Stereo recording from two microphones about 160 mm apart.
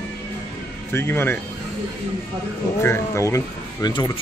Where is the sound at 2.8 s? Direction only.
15° left (ahead or behind).